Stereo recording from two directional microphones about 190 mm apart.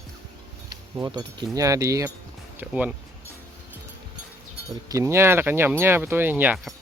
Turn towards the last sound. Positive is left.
turn(degrees=-10)  # may be behind; listen again after turning